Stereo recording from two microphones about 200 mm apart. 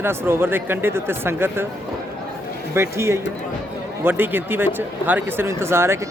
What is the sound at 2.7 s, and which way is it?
Speech, 15° right (ahead or behind).